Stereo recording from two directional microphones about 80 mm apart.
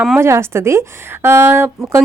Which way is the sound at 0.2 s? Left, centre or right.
Right.